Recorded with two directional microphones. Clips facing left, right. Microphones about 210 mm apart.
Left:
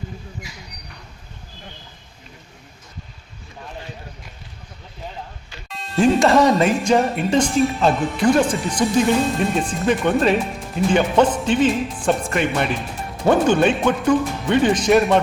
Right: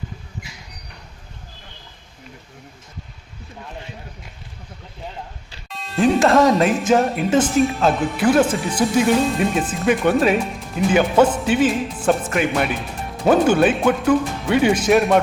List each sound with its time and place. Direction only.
5.6 s speech: centre (ahead or behind)